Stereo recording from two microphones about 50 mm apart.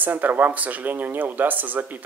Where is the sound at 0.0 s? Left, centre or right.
Right.